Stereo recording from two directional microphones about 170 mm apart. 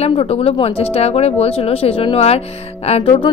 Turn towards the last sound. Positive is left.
turn(degrees=35)  # may be behind; listen again after turning